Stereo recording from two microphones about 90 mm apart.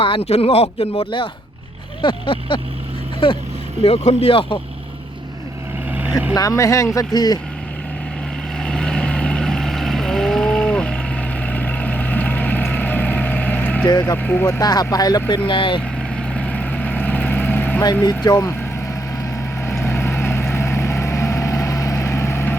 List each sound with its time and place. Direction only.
0.4 s speech: 90° left
2.0 s speech: 65° left (ahead or behind)
3.8 s speech: 90° left
5.9 s vehicle: 20° right (ahead or behind)
6.3 s speech: 40° left (ahead or behind)
8.5 s vehicle: 10° left (ahead or behind)
14.0 s speech: 20° left (ahead or behind)
14.6 s speech: 45° left (ahead or behind)
15.4 s speech: 70° left (ahead or behind)
16.0 s vehicle: 5° left (ahead or behind); by 17.8 s 20° left (ahead or behind)
18.3 s speech: 30° left (ahead or behind)
19.8 s vehicle: 25° left (ahead or behind)